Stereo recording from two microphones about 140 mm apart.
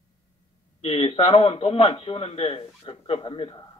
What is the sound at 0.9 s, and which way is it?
A man's voice, 40° left (ahead or behind).